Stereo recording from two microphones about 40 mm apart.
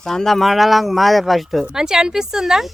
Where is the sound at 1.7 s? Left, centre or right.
Centre.